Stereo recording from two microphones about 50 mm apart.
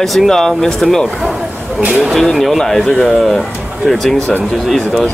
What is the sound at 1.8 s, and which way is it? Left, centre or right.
Speech, right.